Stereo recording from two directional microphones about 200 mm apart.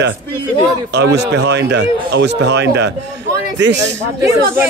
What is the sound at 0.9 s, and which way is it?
A man's voice, 60° right (ahead or behind).